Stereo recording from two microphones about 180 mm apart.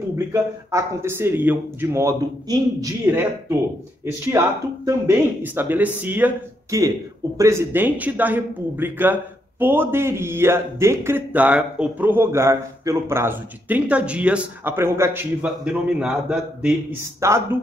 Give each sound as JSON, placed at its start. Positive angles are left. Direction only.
{"t": 0.3, "sound": "speech", "side_deg": -15}